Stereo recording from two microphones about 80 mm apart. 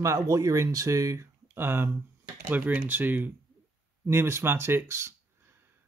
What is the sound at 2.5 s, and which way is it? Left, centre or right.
Speech, centre.